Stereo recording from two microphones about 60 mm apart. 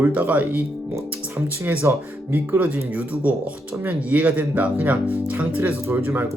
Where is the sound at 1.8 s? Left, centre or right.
Right.